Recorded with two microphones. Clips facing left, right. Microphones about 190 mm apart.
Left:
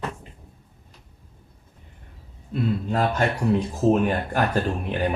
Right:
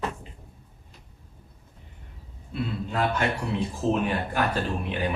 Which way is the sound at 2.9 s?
40° left (ahead or behind).